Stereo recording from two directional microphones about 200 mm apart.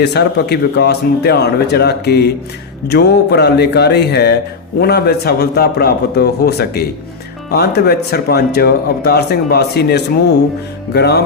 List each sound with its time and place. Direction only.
0.0 s speech: 55° left (ahead or behind)